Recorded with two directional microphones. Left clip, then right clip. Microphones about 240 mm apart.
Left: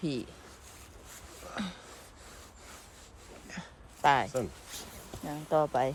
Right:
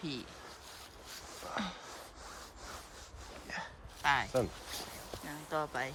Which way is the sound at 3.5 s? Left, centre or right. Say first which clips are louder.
Right 4 dB; right.